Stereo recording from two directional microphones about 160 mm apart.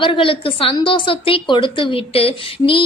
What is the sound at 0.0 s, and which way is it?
Speech, 30° left (ahead or behind).